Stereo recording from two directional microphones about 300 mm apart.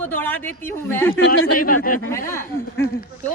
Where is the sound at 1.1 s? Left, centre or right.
Left.